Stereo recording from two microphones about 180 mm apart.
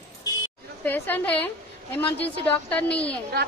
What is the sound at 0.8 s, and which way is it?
Speech, 10° left (ahead or behind).